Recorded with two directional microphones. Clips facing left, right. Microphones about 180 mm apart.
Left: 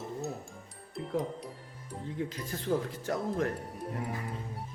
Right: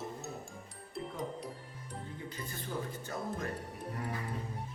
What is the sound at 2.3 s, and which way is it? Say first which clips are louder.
Speech: left 9 dB; 90° left.